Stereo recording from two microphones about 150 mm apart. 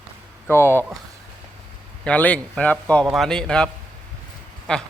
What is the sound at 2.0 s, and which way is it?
A man's voice, 10° left (ahead or behind).